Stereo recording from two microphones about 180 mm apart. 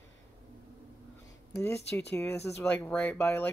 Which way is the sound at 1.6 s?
15° left (ahead or behind).